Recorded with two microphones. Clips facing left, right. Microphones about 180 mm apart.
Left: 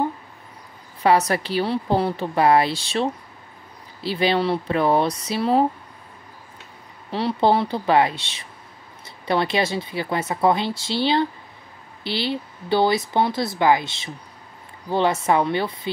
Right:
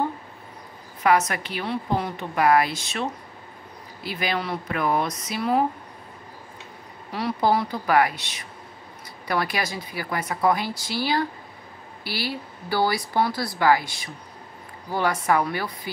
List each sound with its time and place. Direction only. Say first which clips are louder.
1.0 s speech: left 3 dB; 30° left (ahead or behind)
7.1 s speech: left 3 dB; 25° left (ahead or behind)